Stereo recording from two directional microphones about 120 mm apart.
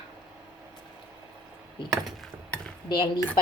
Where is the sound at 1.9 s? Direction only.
Centre (ahead or behind).